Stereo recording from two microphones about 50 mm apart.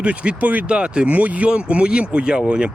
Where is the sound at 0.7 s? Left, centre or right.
Right.